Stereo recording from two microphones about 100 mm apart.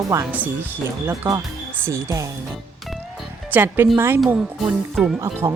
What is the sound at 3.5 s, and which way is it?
Speech, 20° right (ahead or behind).